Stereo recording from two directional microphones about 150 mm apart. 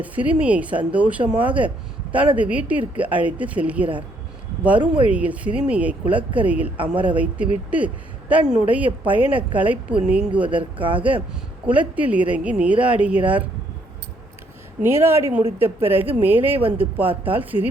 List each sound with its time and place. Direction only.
0.0 s speech: 10° right (ahead or behind)
5.0 s speech: 10° right (ahead or behind)
6.7 s speech: 35° right (ahead or behind)
7.0 s speech: 10° right (ahead or behind)
10.6 s speech: 35° right (ahead or behind)
11.6 s speech: 10° right (ahead or behind)
14.8 s speech: 15° right (ahead or behind)
16.6 s speech: 40° right (ahead or behind)
17.2 s speech: 10° right (ahead or behind)